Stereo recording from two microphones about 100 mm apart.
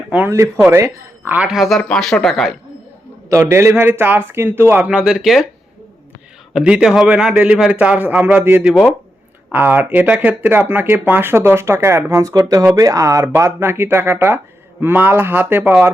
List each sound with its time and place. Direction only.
0.3 s speech: 30° right (ahead or behind)
1.5 s speech: centre (ahead or behind)
3.5 s speech: 25° right (ahead or behind); by 5.5 s centre (ahead or behind)
6.5 s a man's voice: 5° right (ahead or behind)